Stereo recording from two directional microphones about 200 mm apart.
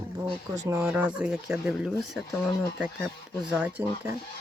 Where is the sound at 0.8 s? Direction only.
5° right (ahead or behind).